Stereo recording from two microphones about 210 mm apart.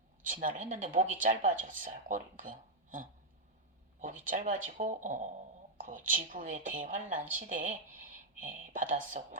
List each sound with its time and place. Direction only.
0.3 s speech: 40° right (ahead or behind)